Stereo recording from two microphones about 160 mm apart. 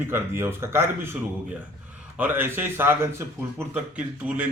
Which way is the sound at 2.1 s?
10° right (ahead or behind).